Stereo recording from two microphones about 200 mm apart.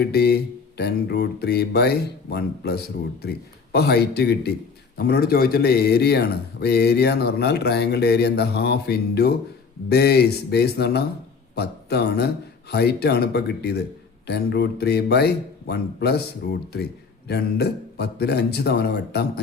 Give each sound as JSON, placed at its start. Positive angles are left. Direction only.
{"t": 0.0, "sound": "speech", "side_deg": 50}